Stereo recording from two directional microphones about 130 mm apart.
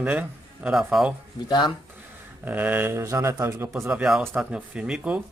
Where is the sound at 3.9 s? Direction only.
5° right (ahead or behind).